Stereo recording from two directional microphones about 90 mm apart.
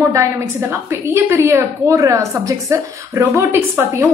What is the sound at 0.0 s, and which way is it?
A woman's voice, 35° right (ahead or behind).